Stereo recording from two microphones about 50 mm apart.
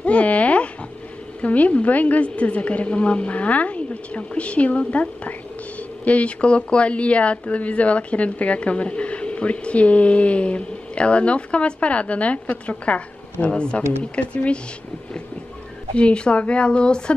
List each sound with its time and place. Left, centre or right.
0.0 s a sound: left
1.4 s speech: left
16.0 s speech: left